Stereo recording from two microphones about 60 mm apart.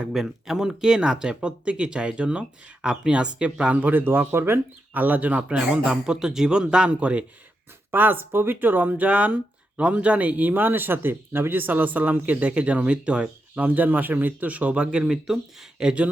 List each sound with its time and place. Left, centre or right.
0.1 s speech: centre
3.8 s speech: right
7.9 s speech: right; by 16.0 s centre